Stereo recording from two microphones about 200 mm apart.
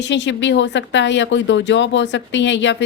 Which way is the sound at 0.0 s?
65° left (ahead or behind).